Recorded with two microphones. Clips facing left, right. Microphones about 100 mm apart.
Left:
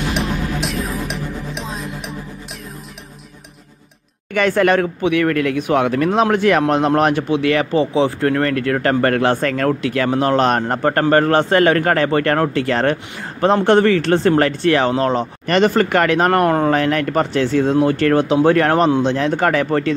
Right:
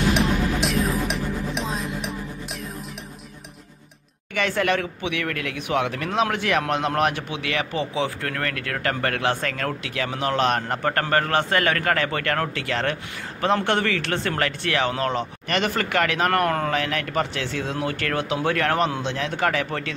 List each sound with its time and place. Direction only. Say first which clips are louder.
0.1 s music: even; centre (ahead or behind)
4.3 s speech: left 8 dB; 45° left (ahead or behind); by 16.7 s 30° left (ahead or behind)
16.7 s speech: left 8 dB; 40° left (ahead or behind)